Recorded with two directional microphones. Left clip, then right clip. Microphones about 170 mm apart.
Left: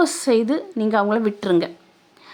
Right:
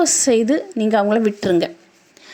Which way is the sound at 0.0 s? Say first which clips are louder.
Right 2 dB; 20° right (ahead or behind).